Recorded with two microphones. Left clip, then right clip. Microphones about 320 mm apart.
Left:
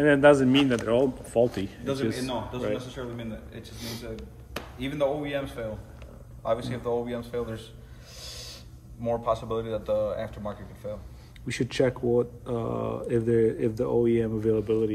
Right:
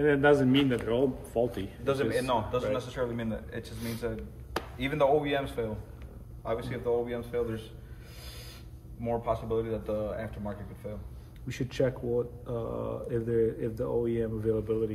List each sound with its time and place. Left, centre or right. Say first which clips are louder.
0.0 s speech: left 5 dB; left
1.9 s speech: right 3 dB; centre
8.2 s snort: left 7 dB; centre
9.0 s speech: left 4 dB; centre
11.4 s speech: left 5 dB; left